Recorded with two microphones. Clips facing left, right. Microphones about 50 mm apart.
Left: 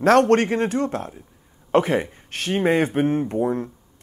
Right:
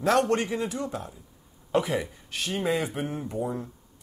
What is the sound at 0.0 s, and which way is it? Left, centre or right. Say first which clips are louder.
Speech: left 8 dB; left.